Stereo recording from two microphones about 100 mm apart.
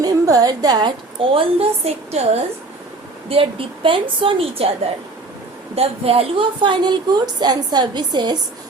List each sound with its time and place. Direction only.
0.0 s a woman's voice: 40° right (ahead or behind); by 2.4 s 90° right
3.2 s a woman's voice: 65° right (ahead or behind)
5.7 s a woman's voice: 85° right; by 8.4 s 50° right (ahead or behind)